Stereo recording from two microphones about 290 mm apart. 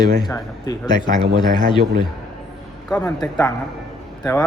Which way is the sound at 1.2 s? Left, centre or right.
Centre.